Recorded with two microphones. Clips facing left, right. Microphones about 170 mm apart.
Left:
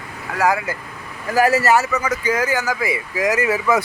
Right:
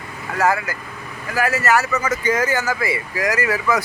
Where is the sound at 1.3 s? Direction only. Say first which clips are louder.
Left 5 dB; 40° left (ahead or behind).